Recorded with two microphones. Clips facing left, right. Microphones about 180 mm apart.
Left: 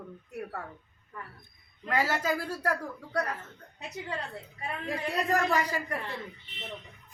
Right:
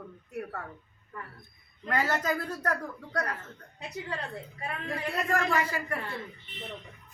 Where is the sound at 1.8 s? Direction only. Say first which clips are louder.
Even; 10° left (ahead or behind).